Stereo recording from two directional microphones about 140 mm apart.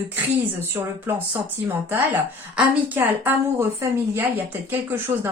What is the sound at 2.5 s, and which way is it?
A woman's voice, 15° right (ahead or behind).